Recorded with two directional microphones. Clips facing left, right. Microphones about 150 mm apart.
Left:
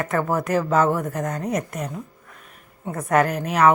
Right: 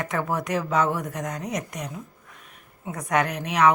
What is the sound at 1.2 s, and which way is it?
Speech, 55° left (ahead or behind).